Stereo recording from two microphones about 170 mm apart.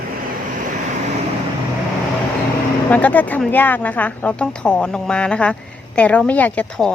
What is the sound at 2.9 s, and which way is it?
Speech, 10° left (ahead or behind).